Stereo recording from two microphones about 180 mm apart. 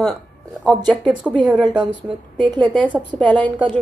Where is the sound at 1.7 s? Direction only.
25° right (ahead or behind).